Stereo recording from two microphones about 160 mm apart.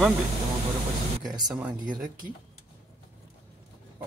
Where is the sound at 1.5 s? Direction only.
10° right (ahead or behind).